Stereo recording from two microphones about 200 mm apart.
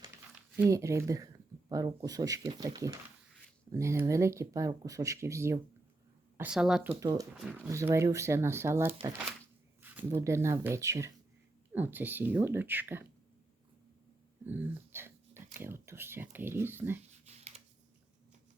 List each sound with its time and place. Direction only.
0.6 s speech: 15° right (ahead or behind)
7.0 s speech: 20° right (ahead or behind)
7.3 s speech: 5° right (ahead or behind)
8.9 s speech: 25° right (ahead or behind)
9.8 s speech: 10° right (ahead or behind)
14.4 s a sound: 10° right (ahead or behind)
15.6 s speech: 10° right (ahead or behind)
17.1 s a sound: 35° right (ahead or behind)